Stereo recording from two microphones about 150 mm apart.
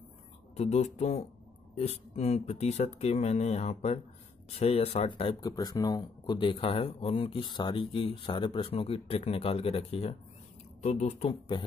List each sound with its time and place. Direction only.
0.6 s speech: 45° left (ahead or behind)
5.4 s speech: 25° left (ahead or behind); by 11.2 s 50° left (ahead or behind)
11.2 s speech: 35° left (ahead or behind)